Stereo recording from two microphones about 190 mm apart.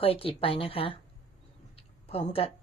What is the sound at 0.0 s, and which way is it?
Speech, 30° left (ahead or behind).